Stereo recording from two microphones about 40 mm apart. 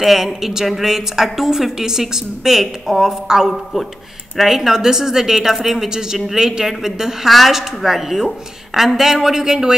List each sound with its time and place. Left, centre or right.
0.0 s a woman's voice: centre